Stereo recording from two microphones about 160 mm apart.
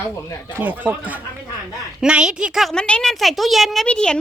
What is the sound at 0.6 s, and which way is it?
A woman's voice, 10° right (ahead or behind).